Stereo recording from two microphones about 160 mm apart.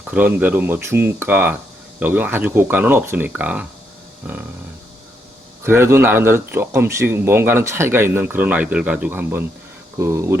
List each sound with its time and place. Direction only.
0.0 s a man's voice: 10° right (ahead or behind)
5.6 s a man's voice: 15° right (ahead or behind)